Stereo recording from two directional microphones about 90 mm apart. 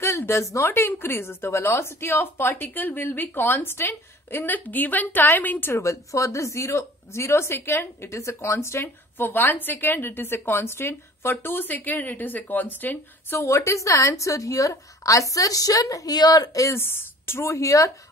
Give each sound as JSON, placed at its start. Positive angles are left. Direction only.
{"t": 0.0, "sound": "speech", "side_deg": 30}